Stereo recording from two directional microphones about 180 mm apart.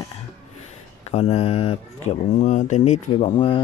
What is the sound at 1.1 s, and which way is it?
Speech, 35° left (ahead or behind).